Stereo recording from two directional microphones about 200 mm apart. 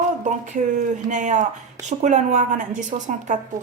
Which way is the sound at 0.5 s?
40° right (ahead or behind).